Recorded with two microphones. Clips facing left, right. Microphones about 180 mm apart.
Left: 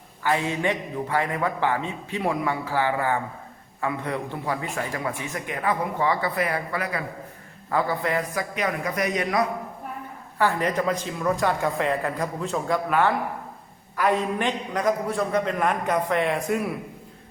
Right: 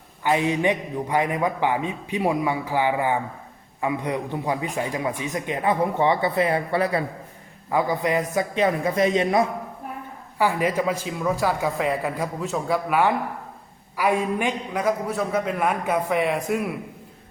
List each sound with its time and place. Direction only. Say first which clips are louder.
0.2 s a man's voice: right 3 dB; 20° right (ahead or behind)
7.7 s a man's voice: right 2 dB; 15° right (ahead or behind)
10.3 s a man's voice: right 1 dB; 10° right (ahead or behind)